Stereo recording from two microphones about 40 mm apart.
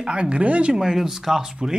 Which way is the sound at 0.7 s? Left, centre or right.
Centre.